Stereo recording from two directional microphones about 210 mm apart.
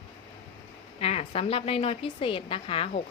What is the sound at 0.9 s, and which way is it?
A woman's voice, 30° left (ahead or behind).